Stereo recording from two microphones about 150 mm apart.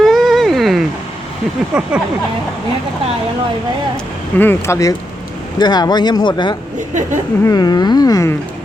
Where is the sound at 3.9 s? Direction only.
15° left (ahead or behind); by 6.6 s 30° left (ahead or behind).